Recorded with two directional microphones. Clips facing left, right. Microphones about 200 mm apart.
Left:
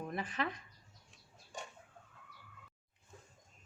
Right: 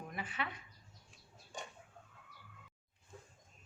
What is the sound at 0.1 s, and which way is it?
Speech, 40° left (ahead or behind).